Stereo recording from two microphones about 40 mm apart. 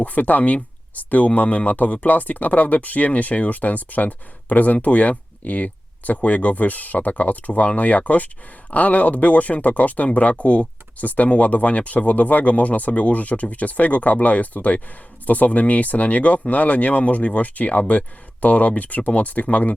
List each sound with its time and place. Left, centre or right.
0.0 s speech: left